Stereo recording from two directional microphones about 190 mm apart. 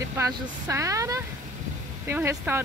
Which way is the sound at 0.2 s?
15° right (ahead or behind).